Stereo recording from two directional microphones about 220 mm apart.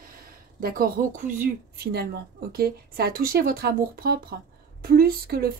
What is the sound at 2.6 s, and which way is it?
A woman's voice, 45° right (ahead or behind).